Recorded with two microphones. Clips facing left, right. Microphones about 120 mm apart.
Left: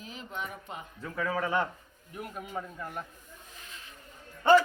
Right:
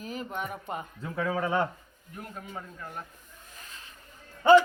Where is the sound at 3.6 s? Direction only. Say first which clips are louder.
Right 2 dB; 40° right (ahead or behind).